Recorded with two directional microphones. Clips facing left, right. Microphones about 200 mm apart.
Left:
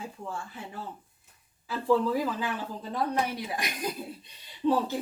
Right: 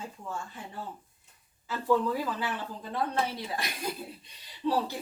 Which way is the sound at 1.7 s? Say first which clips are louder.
Left 2 dB; 10° left (ahead or behind).